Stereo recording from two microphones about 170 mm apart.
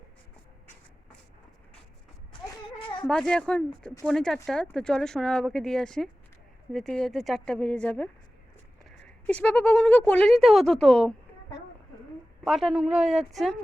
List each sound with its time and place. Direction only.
2.7 s a sound: 30° left (ahead or behind)
3.0 s speech: 5° left (ahead or behind)
12.5 s speech: centre (ahead or behind)